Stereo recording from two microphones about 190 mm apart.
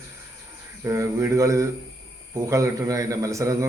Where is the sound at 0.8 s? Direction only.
15° right (ahead or behind).